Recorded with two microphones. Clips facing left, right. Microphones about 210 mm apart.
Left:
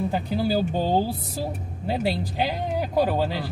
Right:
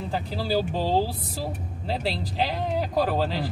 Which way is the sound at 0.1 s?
20° left (ahead or behind).